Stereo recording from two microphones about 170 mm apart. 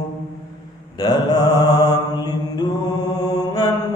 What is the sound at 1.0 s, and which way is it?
Mantra, 25° left (ahead or behind).